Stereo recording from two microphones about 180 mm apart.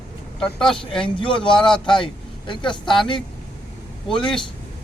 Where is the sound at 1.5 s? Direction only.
5° left (ahead or behind).